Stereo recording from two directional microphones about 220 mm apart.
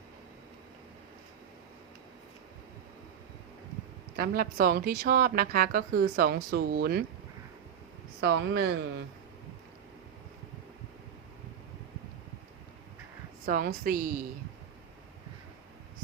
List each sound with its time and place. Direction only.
4.2 s a woman's voice: 40° right (ahead or behind)
8.2 s a woman's voice: 55° right (ahead or behind)
13.4 s a woman's voice: 40° right (ahead or behind)